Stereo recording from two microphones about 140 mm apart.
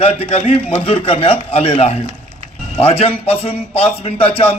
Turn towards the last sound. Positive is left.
turn(degrees=45)  # may be behind; listen again after turning